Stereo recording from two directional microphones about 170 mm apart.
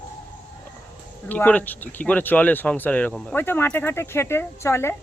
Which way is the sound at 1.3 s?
10° left (ahead or behind).